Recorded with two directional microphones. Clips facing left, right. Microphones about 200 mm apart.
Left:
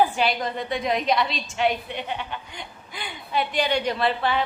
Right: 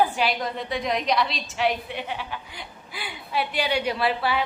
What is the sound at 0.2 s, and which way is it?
A woman's voice, centre (ahead or behind).